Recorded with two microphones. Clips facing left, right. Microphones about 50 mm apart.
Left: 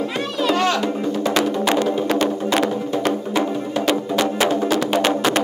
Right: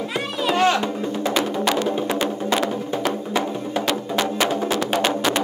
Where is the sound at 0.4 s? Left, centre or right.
Centre.